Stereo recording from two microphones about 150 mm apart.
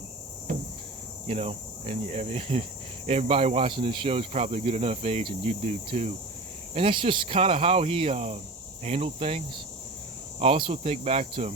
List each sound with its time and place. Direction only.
0.5 s cricket: 60° right (ahead or behind)
1.3 s cricket: 40° right (ahead or behind)
3.1 s speech: 40° right (ahead or behind)
10.4 s speech: 40° right (ahead or behind)